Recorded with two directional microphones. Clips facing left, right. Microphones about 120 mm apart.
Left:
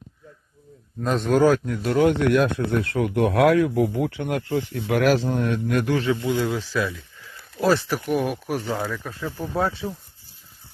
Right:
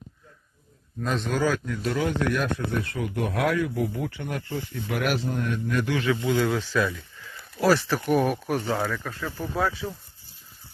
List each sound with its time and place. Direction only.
1.0 s speech: 45° left (ahead or behind); by 5.9 s 65° left (ahead or behind)
6.2 s speech: 15° left (ahead or behind)
6.7 s speech: centre (ahead or behind)
7.6 s speech: 20° left (ahead or behind)
8.0 s speech: centre (ahead or behind)
8.8 s speech: 15° left (ahead or behind)